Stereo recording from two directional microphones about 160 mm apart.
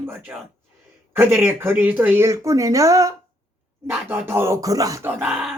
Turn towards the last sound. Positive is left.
turn(degrees=-15)  # may be behind; listen again after turning